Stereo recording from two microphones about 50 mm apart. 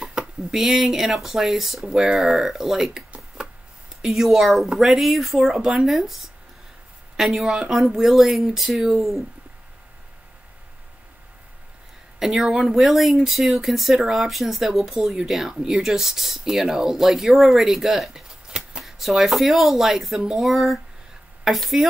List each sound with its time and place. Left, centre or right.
0.0 s speech: centre
3.4 s chopping: centre
4.0 s speech: centre
8.9 s speech: centre
12.2 s speech: centre